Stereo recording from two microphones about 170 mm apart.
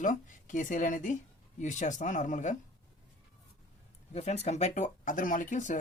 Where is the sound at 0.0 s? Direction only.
50° left (ahead or behind).